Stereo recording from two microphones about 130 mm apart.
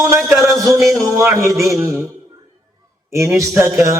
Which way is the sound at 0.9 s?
25° right (ahead or behind).